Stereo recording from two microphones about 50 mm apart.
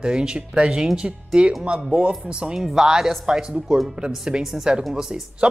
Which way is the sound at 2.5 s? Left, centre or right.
Centre.